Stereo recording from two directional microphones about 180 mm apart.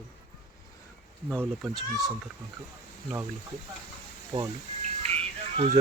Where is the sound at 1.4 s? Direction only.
5° right (ahead or behind).